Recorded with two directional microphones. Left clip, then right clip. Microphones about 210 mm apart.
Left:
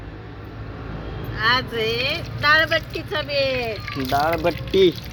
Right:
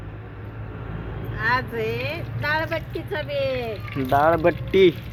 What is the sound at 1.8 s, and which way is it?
Speech, 5° left (ahead or behind).